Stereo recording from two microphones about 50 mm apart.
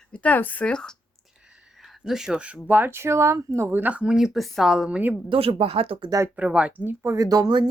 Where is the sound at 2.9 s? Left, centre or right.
Right.